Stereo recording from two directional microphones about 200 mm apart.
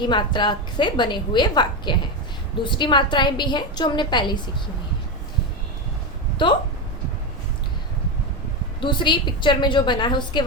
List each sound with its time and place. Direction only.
0.0 s a woman's voice: 20° left (ahead or behind)
8.8 s a woman's voice: 25° left (ahead or behind)